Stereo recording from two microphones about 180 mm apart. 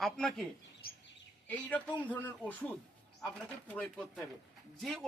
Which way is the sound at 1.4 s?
10° left (ahead or behind).